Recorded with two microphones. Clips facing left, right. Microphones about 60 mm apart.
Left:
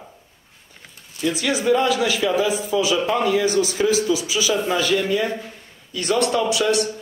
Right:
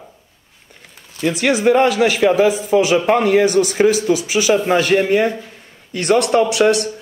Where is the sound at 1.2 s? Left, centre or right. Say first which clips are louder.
Right 5 dB; right.